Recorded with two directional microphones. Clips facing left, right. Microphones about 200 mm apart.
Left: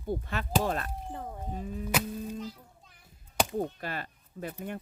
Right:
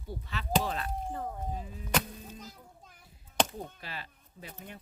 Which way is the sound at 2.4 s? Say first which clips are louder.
Left 8 dB; 45° right (ahead or behind).